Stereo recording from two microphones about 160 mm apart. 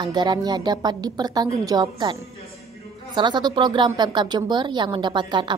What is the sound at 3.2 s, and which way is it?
A woman's voice, 30° right (ahead or behind).